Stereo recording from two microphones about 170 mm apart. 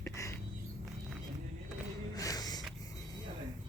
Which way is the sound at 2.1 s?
20° left (ahead or behind).